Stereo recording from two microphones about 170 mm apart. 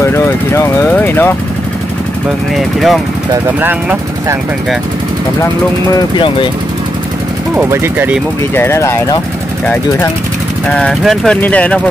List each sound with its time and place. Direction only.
0.0 s speech: 15° left (ahead or behind)
2.5 s speech: centre (ahead or behind)
3.6 s speech: 10° right (ahead or behind)
5.9 s speech: 30° left (ahead or behind)
7.5 s speech: 15° right (ahead or behind)
8.5 s speech: 15° left (ahead or behind)
10.7 s speech: 5° left (ahead or behind)